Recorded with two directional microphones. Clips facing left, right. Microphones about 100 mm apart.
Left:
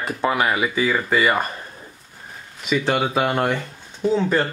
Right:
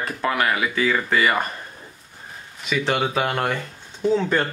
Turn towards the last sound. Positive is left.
turn(degrees=5)  # may be behind; listen again after turning